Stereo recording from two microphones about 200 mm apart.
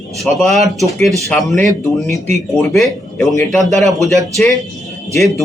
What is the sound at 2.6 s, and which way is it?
Speech, centre (ahead or behind).